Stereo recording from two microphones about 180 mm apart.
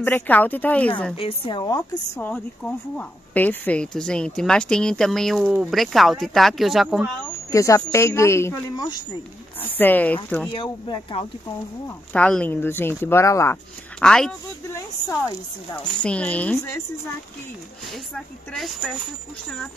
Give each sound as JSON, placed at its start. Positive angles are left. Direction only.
{"t": 0.0, "sound": "speech", "side_deg": 10}
{"t": 1.1, "sound": "a woman's voice", "side_deg": 30}
{"t": 2.1, "sound": "speech", "side_deg": 5}
{"t": 7.5, "sound": "speech", "side_deg": 15}
{"t": 10.5, "sound": "a woman's voice", "side_deg": 30}
{"t": 12.1, "sound": "speech", "side_deg": 5}
{"t": 13.9, "sound": "speech", "side_deg": 5}
{"t": 14.7, "sound": "a woman's voice", "side_deg": 20}
{"t": 15.7, "sound": "speech", "side_deg": 5}
{"t": 17.8, "sound": "speech", "side_deg": 0}